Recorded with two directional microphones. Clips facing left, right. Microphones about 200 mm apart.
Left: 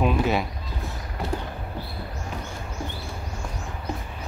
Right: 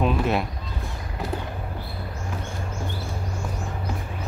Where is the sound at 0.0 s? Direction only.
Centre (ahead or behind).